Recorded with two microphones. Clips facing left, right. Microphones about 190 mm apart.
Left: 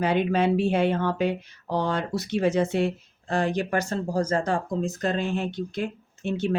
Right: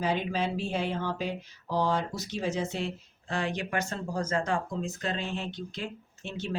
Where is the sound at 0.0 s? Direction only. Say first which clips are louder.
Left 7 dB; 65° left (ahead or behind).